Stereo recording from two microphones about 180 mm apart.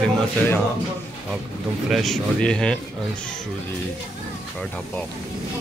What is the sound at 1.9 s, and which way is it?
Speech, centre (ahead or behind).